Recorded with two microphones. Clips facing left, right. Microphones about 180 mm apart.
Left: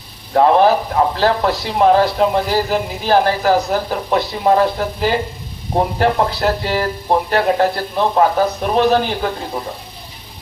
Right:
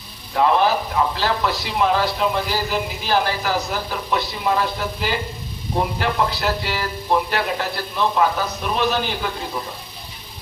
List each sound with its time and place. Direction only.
0.3 s a man's voice: 50° left (ahead or behind)